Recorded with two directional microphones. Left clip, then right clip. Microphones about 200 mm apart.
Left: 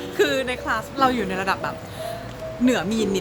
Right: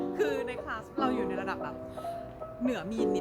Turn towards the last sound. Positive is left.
turn(degrees=-10)  # may be behind; listen again after turning